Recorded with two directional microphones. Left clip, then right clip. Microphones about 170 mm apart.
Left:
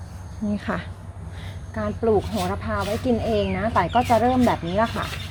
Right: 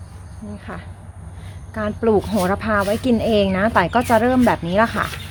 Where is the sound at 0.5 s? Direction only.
65° left (ahead or behind).